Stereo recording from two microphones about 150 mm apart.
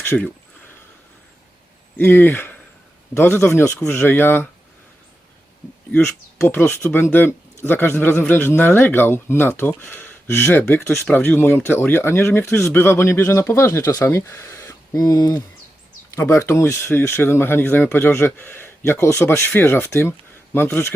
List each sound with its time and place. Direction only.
0.0 s speech: 15° left (ahead or behind)
2.0 s speech: 15° left (ahead or behind)
5.9 s speech: 15° left (ahead or behind)